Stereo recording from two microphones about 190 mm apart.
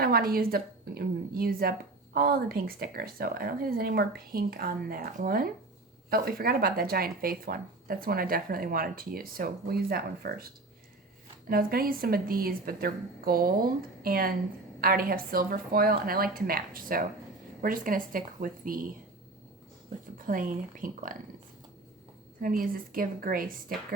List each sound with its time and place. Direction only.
0.0 s speech: 50° right (ahead or behind)
11.4 s speech: 50° right (ahead or behind)
20.1 s speech: 45° right (ahead or behind)
22.4 s speech: 50° right (ahead or behind)